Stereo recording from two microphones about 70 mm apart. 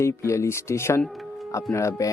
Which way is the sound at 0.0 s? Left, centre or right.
Left.